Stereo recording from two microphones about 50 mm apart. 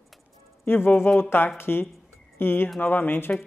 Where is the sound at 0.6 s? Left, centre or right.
Left.